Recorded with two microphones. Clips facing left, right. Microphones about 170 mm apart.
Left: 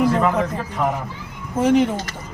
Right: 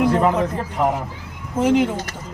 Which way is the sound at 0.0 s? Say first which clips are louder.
Right 1 dB; 20° right (ahead or behind).